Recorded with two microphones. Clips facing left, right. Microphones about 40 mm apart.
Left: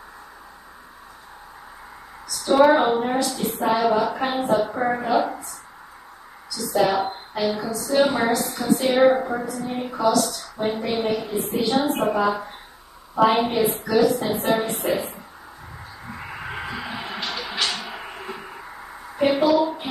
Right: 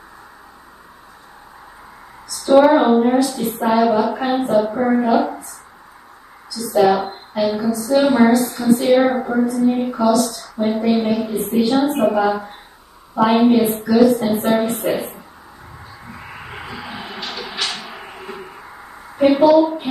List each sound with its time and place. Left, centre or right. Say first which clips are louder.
2.6 s female singing: right 4 dB; centre
6.7 s female singing: right 5 dB; centre
12.0 s speech: right 5 dB; centre
13.1 s female singing: right 5 dB; centre
16.2 s a sound: left 2 dB; centre
19.1 s a woman's voice: right 6 dB; centre